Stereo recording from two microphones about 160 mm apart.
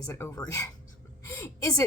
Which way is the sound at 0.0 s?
15° left (ahead or behind).